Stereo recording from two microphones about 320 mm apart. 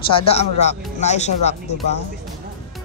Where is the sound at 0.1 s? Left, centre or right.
Centre.